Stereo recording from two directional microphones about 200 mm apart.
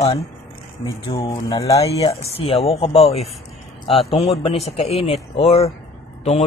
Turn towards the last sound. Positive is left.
turn(degrees=30)  # may be behind; listen again after turning